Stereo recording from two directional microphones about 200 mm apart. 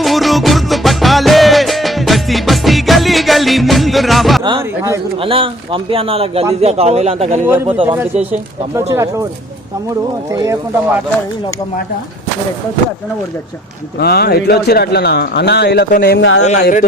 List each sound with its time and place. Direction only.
0.0 s music: centre (ahead or behind)
5.2 s a man's voice: 25° right (ahead or behind)
7.4 s speech: 10° right (ahead or behind)
14.0 s speech: 50° left (ahead or behind)
16.2 s speech: 75° left (ahead or behind)
16.5 s speech: 40° left (ahead or behind)